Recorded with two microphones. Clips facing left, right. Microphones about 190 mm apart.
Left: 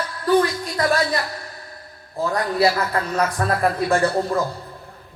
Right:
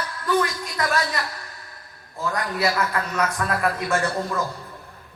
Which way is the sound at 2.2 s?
35° left (ahead or behind).